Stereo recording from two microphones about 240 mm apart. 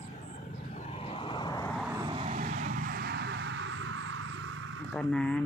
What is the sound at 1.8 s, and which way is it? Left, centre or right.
Vehicle, centre.